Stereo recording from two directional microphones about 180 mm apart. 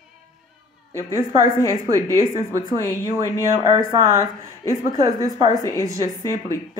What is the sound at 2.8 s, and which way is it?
Speech, 20° left (ahead or behind).